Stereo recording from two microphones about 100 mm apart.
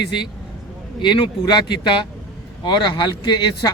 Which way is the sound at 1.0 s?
50° left (ahead or behind).